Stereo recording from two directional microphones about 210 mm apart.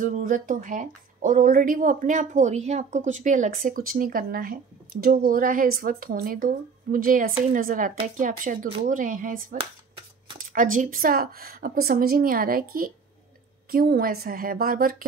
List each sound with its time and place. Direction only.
0.0 s a woman's voice: 40° right (ahead or behind)